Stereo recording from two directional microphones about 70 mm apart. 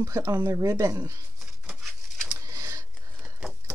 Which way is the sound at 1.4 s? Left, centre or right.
Centre.